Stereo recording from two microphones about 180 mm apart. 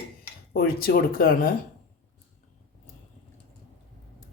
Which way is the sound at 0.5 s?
55° left (ahead or behind).